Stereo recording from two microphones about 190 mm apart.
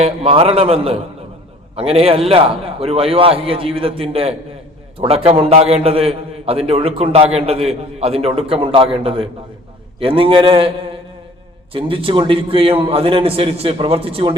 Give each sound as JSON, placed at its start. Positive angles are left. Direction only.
{"t": 0.0, "sound": "a man's voice", "side_deg": -30}
{"t": 11.7, "sound": "a man's voice", "side_deg": -30}